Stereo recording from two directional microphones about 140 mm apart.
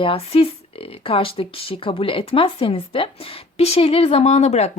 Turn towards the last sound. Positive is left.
turn(degrees=55)  # may be behind; listen again after turning